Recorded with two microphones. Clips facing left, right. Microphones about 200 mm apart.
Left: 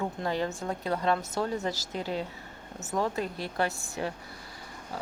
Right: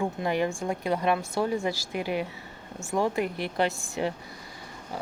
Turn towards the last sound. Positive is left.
turn(degrees=-15)  # may be behind; listen again after turning